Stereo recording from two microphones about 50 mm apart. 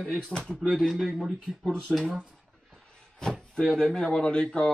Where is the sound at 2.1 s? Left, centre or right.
Centre.